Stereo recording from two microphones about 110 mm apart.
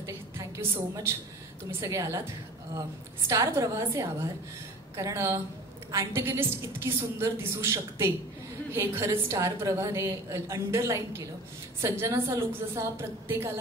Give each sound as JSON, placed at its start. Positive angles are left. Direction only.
{"t": 0.6, "sound": "a woman's voice", "side_deg": -20}